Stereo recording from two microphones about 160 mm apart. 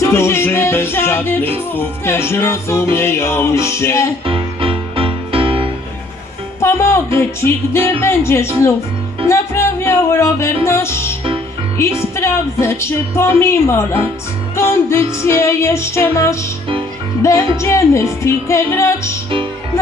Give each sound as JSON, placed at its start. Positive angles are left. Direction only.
{"t": 0.0, "sound": "music", "side_deg": 15}
{"t": 4.3, "sound": "music", "side_deg": -35}
{"t": 6.6, "sound": "music", "side_deg": 15}
{"t": 9.8, "sound": "music", "side_deg": 15}
{"t": 12.1, "sound": "music", "side_deg": 15}